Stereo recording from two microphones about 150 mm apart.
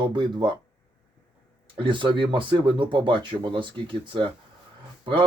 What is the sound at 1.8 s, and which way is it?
Speech, 35° right (ahead or behind).